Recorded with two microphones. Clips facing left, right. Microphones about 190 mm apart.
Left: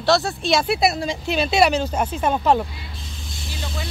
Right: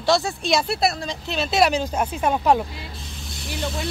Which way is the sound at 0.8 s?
5° left (ahead or behind).